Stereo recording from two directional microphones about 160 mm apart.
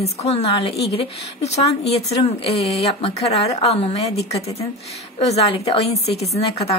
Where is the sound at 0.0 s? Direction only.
40° left (ahead or behind).